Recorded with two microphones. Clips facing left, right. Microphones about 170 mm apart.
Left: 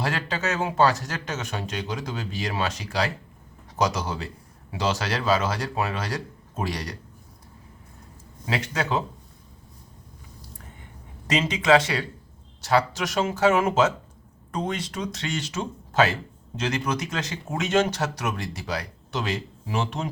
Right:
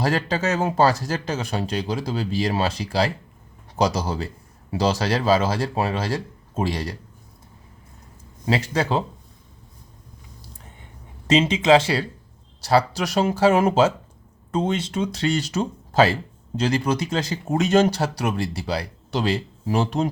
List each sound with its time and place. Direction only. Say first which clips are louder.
0.0 s speech: right 5 dB; 35° right (ahead or behind)
8.4 s speech: right 5 dB; 35° right (ahead or behind)
11.3 s speech: right 4 dB; 25° right (ahead or behind)